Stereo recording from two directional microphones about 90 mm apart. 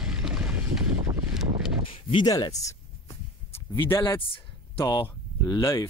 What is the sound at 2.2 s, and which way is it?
Speech, 45° left (ahead or behind).